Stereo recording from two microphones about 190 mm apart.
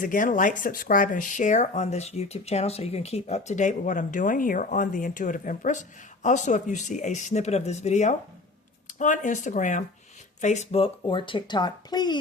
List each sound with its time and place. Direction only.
0.0 s speech: 45° left (ahead or behind); by 12.2 s 20° left (ahead or behind)